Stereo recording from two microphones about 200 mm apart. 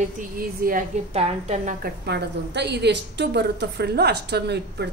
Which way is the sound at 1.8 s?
55° right (ahead or behind).